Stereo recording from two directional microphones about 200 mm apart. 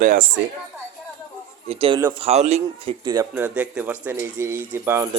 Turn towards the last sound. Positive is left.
turn(degrees=-10)  # may be behind; listen again after turning